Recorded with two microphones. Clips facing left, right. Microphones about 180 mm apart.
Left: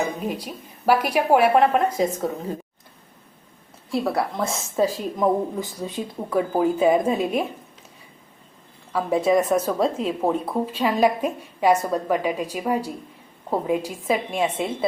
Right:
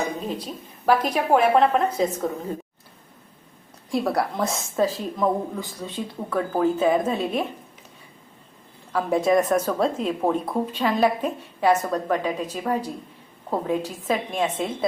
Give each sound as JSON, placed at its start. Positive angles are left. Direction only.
{"t": 0.2, "sound": "a woman's voice", "side_deg": 10}
{"t": 3.9, "sound": "a woman's voice", "side_deg": 0}
{"t": 4.8, "sound": "a woman's voice", "side_deg": 15}
{"t": 8.9, "sound": "a woman's voice", "side_deg": 0}